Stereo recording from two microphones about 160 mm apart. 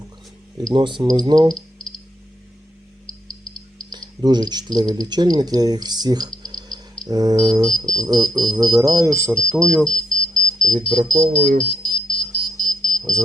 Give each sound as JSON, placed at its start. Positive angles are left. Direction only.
{"t": 0.7, "sound": "speech", "side_deg": -30}
{"t": 3.9, "sound": "speech", "side_deg": -25}
{"t": 6.4, "sound": "cricket", "side_deg": -25}
{"t": 7.0, "sound": "speech", "side_deg": -25}
{"t": 9.3, "sound": "smoke detector", "side_deg": 5}
{"t": 10.7, "sound": "speech", "side_deg": -25}
{"t": 11.6, "sound": "smoke detector", "side_deg": 5}
{"t": 12.2, "sound": "smoke detector", "side_deg": -25}
{"t": 12.5, "sound": "smoke detector", "side_deg": 5}